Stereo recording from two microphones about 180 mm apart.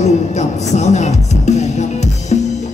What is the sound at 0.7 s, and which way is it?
Music, 40° left (ahead or behind).